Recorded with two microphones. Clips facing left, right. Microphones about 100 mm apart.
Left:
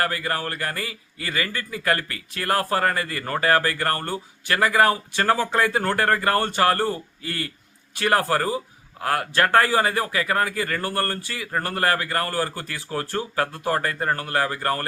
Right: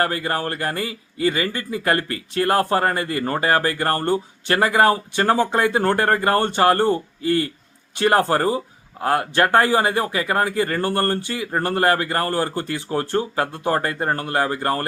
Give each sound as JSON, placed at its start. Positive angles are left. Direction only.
{"t": 0.0, "sound": "a man's voice", "side_deg": -25}